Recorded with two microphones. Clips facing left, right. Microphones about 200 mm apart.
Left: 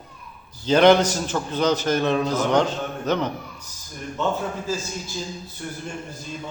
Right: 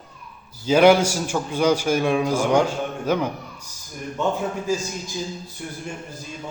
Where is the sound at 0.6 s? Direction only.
10° right (ahead or behind).